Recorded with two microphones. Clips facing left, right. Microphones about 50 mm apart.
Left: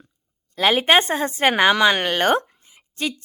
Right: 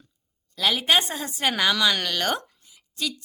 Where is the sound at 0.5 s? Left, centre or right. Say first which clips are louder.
Left 5 dB; left.